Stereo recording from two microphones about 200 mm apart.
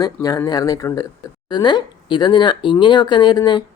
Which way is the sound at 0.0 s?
20° left (ahead or behind).